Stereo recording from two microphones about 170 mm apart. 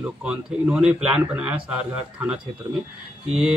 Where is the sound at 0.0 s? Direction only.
5° right (ahead or behind).